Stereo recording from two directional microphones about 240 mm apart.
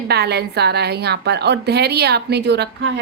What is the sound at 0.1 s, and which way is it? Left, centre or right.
A woman's voice, right.